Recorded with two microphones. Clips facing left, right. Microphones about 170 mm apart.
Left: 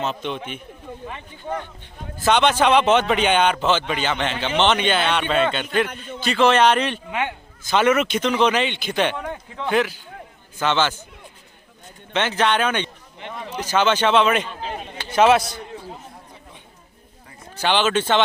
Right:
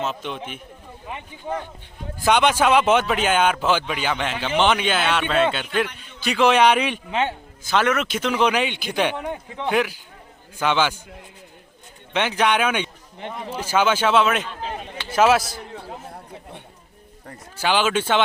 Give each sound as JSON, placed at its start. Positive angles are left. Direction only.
{"t": 0.0, "sound": "a man's voice", "side_deg": -5}
{"t": 5.8, "sound": "a man's voice", "side_deg": 50}
{"t": 6.2, "sound": "speech", "side_deg": -10}
{"t": 7.1, "sound": "a man's voice", "side_deg": -25}
{"t": 7.6, "sound": "speech", "side_deg": 0}
{"t": 12.1, "sound": "a man's voice", "side_deg": -10}
{"t": 17.6, "sound": "speech", "side_deg": -5}